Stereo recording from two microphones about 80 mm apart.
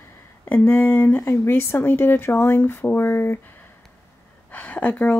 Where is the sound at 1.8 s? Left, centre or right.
Left.